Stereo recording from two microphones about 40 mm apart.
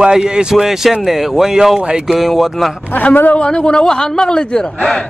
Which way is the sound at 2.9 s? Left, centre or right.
Left.